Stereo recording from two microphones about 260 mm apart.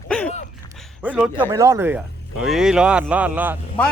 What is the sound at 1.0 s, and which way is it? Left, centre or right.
Speech, centre.